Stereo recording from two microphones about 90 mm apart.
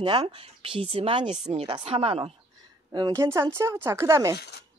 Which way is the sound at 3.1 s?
30° right (ahead or behind).